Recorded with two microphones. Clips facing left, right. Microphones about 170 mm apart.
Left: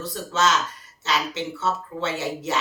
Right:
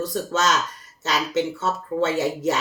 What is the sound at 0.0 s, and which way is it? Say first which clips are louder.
Speech: right 1 dB; 45° right (ahead or behind).